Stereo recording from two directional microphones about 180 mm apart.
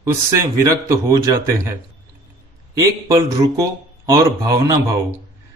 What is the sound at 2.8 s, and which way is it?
A man's voice, 15° right (ahead or behind).